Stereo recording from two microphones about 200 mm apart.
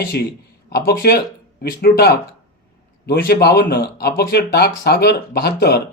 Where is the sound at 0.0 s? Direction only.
50° left (ahead or behind).